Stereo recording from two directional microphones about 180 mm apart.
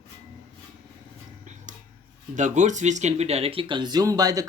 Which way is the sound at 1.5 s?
45° right (ahead or behind).